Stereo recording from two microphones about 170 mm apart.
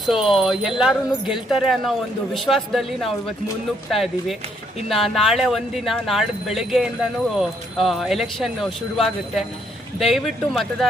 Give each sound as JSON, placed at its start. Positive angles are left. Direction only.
{"t": 0.0, "sound": "speech", "side_deg": 0}